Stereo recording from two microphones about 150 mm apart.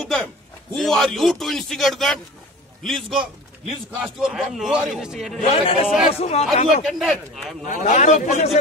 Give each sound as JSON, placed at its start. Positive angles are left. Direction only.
{"t": 0.0, "sound": "a sound", "side_deg": 0}
{"t": 0.7, "sound": "a man's voice", "side_deg": 0}
{"t": 5.5, "sound": "a man's voice", "side_deg": 40}
{"t": 6.9, "sound": "a man's voice", "side_deg": 0}
{"t": 7.6, "sound": "a man's voice", "side_deg": 55}